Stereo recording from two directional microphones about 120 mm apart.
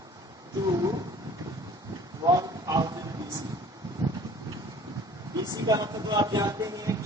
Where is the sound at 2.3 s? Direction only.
30° right (ahead or behind).